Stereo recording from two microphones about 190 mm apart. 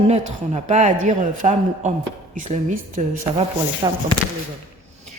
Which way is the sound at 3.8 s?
20° right (ahead or behind).